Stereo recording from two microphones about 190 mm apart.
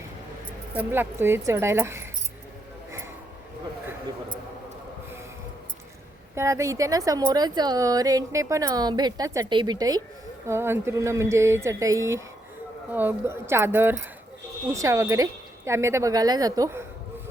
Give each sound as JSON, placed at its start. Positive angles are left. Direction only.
{"t": 0.8, "sound": "speech", "side_deg": -10}
{"t": 6.3, "sound": "speech", "side_deg": -15}